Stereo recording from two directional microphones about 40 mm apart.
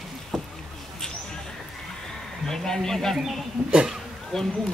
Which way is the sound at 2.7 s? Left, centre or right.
Centre.